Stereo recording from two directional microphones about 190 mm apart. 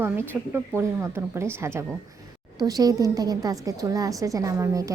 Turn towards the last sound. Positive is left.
turn(degrees=-15)  # may be behind; listen again after turning